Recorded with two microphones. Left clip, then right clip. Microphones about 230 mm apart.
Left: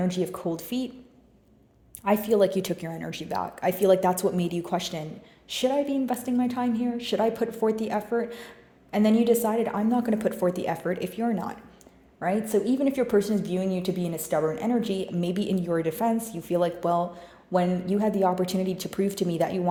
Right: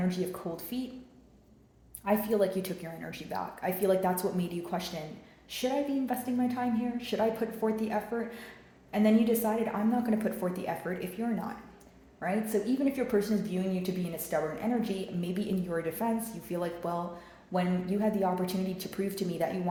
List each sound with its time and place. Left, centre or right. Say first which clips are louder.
0.1 s a woman's voice: left 6 dB; left
2.0 s a woman's voice: left 6 dB; left